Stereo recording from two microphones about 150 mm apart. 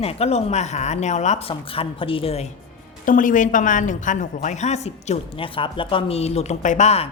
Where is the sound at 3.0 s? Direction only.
60° left (ahead or behind); by 7.1 s 45° left (ahead or behind).